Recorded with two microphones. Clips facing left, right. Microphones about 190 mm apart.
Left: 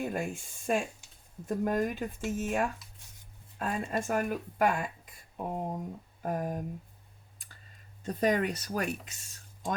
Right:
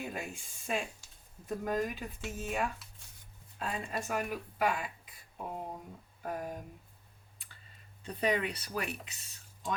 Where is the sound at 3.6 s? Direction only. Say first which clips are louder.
Left 5 dB; 50° left (ahead or behind).